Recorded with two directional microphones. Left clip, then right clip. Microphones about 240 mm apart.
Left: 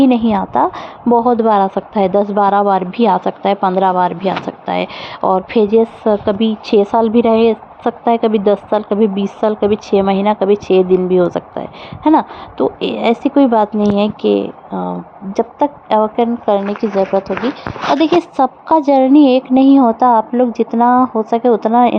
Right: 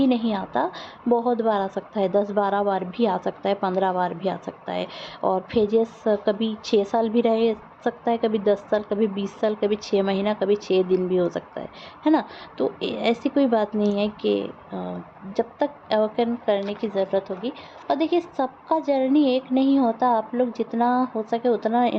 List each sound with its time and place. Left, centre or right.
0.3 s a woman's voice: left